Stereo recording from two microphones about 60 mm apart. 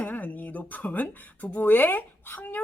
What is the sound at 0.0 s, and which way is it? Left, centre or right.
Speech, left.